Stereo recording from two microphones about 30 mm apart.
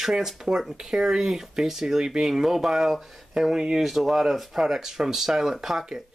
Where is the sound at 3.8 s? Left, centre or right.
Centre.